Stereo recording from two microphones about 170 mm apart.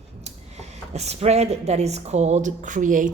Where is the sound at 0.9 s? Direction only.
40° right (ahead or behind).